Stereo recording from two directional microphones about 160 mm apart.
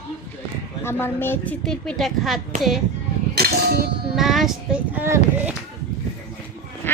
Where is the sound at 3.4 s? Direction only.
80° right.